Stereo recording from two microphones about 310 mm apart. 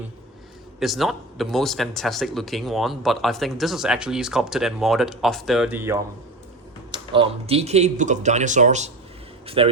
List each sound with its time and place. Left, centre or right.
0.8 s speech: centre